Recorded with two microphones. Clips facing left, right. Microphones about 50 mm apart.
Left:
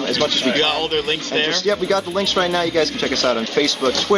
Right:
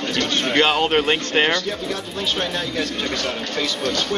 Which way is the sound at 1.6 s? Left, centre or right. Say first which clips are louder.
Left 8 dB; left.